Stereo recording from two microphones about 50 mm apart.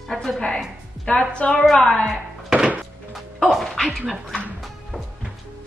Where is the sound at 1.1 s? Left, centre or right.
Centre.